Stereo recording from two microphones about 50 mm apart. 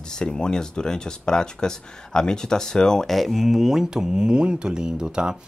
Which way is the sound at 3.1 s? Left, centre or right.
Centre.